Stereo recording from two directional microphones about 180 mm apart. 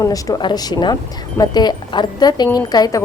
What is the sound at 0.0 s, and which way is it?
Speech, 20° left (ahead or behind).